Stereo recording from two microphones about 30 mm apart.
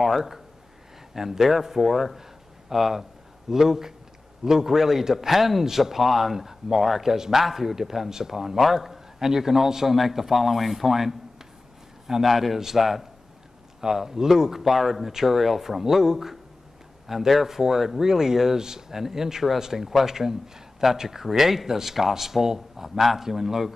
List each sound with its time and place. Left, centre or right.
0.0 s a man's voice: centre
12.2 s a man's voice: centre